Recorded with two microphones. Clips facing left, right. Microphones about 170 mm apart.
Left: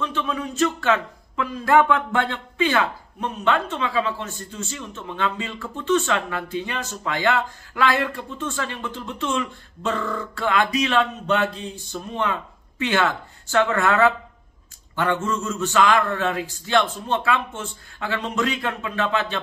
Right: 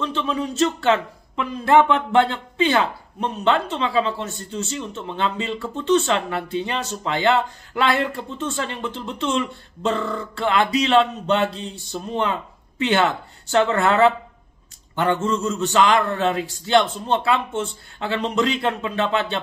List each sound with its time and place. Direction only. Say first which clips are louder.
0.0 s speech: right 2 dB; 30° right (ahead or behind)